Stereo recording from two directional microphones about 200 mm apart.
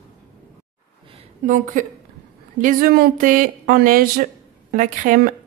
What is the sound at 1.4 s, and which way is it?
A woman's voice, 40° right (ahead or behind).